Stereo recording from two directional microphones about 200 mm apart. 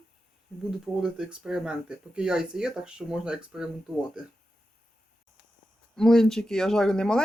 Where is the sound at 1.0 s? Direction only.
5° right (ahead or behind).